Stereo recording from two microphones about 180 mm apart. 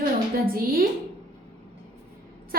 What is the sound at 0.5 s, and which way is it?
Speech, 55° right (ahead or behind).